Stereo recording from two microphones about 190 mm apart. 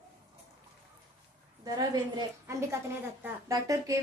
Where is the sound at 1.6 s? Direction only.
20° right (ahead or behind).